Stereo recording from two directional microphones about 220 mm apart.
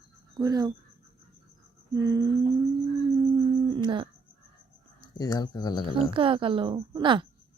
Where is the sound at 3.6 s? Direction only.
20° right (ahead or behind).